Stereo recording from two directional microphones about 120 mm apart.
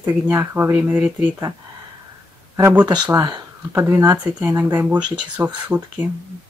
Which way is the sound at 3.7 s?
20° right (ahead or behind).